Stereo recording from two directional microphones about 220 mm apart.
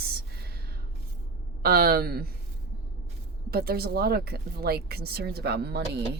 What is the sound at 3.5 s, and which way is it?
Speech, 45° right (ahead or behind).